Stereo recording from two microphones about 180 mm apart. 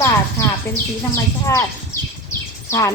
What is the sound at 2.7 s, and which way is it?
Speech, 15° left (ahead or behind).